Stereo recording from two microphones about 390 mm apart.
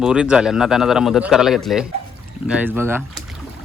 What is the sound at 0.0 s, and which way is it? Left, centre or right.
Speech, centre.